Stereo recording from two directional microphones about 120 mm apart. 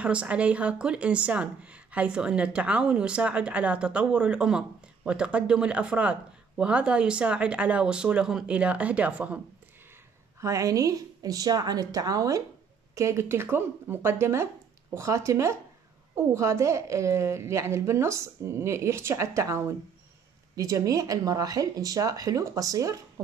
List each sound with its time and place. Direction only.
0.0 s speech: 10° right (ahead or behind)
10.4 s a woman's voice: 25° right (ahead or behind)